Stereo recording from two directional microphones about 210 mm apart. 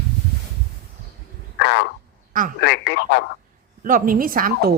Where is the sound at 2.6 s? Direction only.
55° left (ahead or behind).